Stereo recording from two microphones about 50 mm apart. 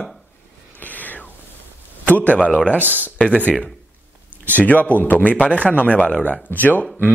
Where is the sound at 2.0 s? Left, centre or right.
Left.